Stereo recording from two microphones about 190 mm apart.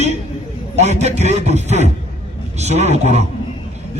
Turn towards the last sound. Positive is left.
turn(degrees=-35)  # may be behind; listen again after turning